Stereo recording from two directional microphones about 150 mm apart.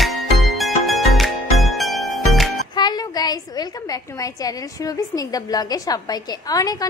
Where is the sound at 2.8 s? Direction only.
30° left (ahead or behind).